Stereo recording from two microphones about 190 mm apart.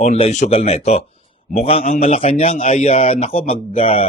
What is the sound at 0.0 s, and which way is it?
A man's voice, 35° left (ahead or behind).